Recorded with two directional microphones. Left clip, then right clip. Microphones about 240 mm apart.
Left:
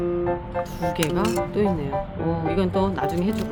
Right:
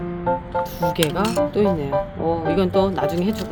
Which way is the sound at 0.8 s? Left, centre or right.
Right.